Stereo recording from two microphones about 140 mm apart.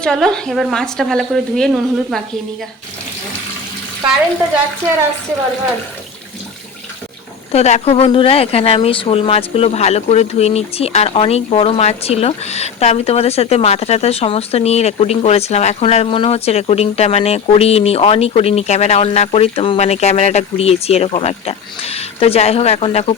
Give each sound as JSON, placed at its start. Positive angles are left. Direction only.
{"t": 0.0, "sound": "speech", "side_deg": 5}
{"t": 7.5, "sound": "speech", "side_deg": 50}